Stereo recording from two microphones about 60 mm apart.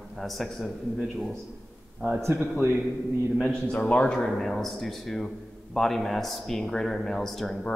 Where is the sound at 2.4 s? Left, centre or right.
Right.